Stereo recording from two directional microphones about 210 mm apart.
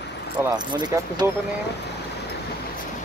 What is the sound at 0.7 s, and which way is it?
Speech, 20° right (ahead or behind).